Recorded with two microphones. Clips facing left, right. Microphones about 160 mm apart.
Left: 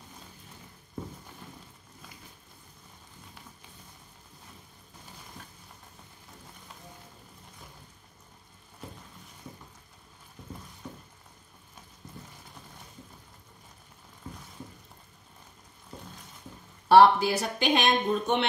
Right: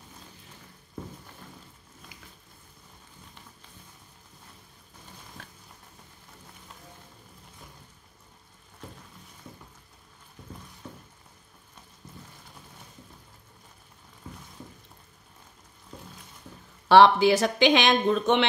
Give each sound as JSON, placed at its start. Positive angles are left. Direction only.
{"t": 16.9, "sound": "speech", "side_deg": -90}